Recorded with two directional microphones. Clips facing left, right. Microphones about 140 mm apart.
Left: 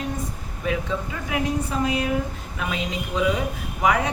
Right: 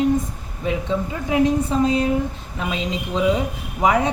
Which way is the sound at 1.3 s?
25° right (ahead or behind).